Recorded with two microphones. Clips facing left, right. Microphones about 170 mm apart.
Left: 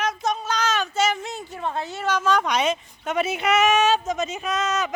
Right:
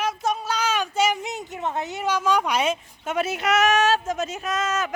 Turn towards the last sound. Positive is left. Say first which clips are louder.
# left 1 dB
turn(degrees=-5)  # may be behind; listen again after turning